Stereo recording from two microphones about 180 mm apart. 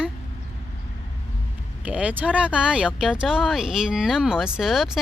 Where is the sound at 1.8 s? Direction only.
5° right (ahead or behind).